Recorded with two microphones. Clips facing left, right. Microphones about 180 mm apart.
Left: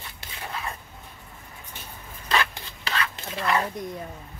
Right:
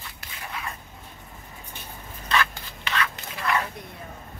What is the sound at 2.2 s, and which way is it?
Dog, 35° left (ahead or behind).